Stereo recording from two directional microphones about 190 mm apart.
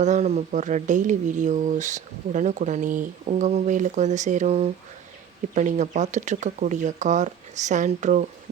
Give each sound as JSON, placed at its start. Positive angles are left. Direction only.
{"t": 0.0, "sound": "speech", "side_deg": -35}